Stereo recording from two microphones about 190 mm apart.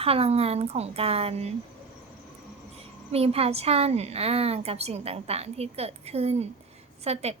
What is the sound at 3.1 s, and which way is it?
A woman's voice, 30° right (ahead or behind).